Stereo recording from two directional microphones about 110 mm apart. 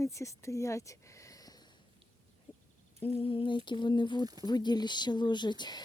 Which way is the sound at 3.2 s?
55° left (ahead or behind).